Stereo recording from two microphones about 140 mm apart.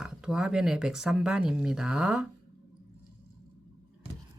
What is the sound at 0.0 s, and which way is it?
Speech, 5° right (ahead or behind).